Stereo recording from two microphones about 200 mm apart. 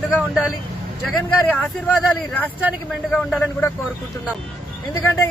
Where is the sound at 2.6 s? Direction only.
5° right (ahead or behind).